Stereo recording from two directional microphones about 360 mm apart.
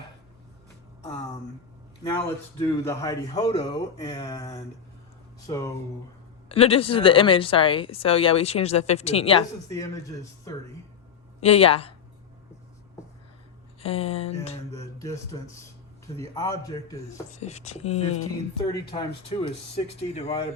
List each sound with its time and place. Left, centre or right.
2.0 s speech: centre
11.3 s speech: centre
13.8 s speech: centre